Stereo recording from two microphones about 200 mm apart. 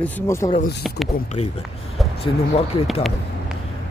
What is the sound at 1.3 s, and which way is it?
Speech, 30° left (ahead or behind).